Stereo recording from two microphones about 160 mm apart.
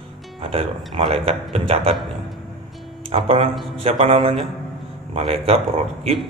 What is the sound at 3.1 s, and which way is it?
Speech, 40° right (ahead or behind).